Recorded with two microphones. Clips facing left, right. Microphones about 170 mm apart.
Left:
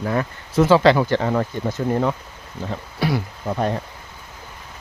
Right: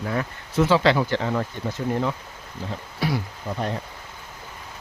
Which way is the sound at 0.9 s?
55° left (ahead or behind).